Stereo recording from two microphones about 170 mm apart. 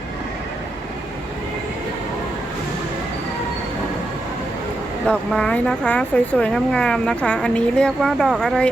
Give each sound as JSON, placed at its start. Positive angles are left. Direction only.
{"t": 5.0, "sound": "speech", "side_deg": 5}